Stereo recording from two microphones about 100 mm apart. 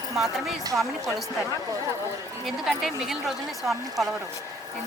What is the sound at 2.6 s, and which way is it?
Speech, 5° right (ahead or behind).